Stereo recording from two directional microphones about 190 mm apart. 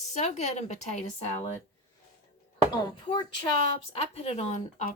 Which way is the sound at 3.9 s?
35° left (ahead or behind).